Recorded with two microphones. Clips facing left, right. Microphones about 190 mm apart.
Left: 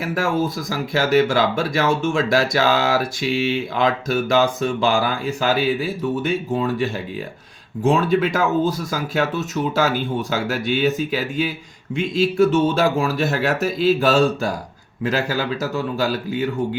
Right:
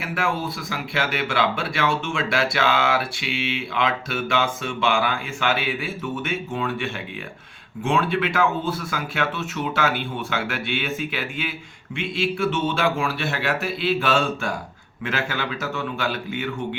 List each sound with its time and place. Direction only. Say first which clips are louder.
0.0 s speech: left 5 dB; 40° left (ahead or behind)